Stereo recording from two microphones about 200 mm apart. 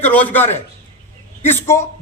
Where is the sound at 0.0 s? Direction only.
10° left (ahead or behind).